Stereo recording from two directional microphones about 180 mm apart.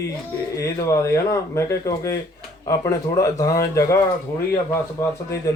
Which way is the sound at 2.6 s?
20° left (ahead or behind).